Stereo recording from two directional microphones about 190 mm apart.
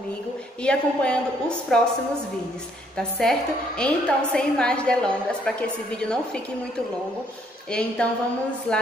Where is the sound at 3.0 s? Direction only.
5° left (ahead or behind).